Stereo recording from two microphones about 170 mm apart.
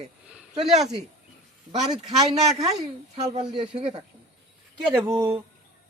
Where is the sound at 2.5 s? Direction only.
40° right (ahead or behind).